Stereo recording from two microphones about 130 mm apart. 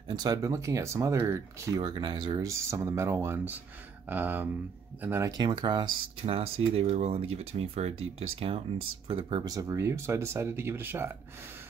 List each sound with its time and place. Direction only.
0.1 s speech: 30° right (ahead or behind)
1.8 s speech: 35° right (ahead or behind); by 5.3 s 20° right (ahead or behind)
5.4 s speech: 35° right (ahead or behind)
9.5 s speech: 25° right (ahead or behind)